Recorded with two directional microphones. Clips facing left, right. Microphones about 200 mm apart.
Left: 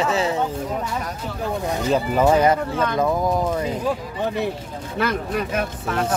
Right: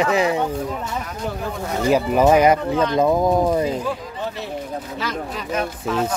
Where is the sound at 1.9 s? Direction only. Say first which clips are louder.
Right 3 dB; 10° right (ahead or behind).